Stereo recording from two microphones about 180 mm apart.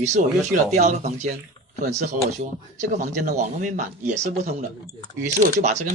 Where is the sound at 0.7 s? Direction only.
40° right (ahead or behind).